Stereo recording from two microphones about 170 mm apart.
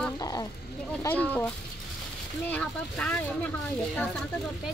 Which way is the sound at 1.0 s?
10° left (ahead or behind).